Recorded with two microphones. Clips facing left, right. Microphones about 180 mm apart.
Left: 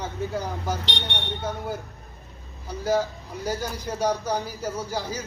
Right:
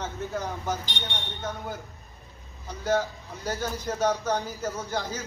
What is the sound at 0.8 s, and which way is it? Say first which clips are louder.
Speech: left 4 dB; 70° left (ahead or behind).